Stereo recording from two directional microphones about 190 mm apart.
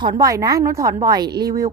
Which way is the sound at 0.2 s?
15° right (ahead or behind).